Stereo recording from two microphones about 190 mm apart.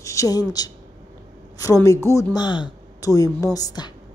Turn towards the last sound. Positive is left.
turn(degrees=20)  # may be behind; listen again after turning